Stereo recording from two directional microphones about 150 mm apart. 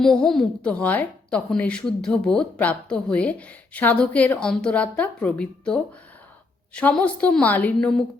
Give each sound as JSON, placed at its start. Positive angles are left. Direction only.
{"t": 0.0, "sound": "a woman's voice", "side_deg": 5}